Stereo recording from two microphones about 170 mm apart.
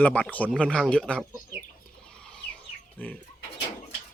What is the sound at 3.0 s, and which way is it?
Speech, 10° left (ahead or behind).